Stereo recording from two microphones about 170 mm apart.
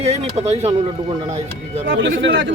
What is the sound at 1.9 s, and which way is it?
Speech, 90° right.